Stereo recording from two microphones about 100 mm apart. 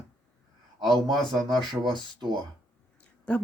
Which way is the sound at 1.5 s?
50° right (ahead or behind).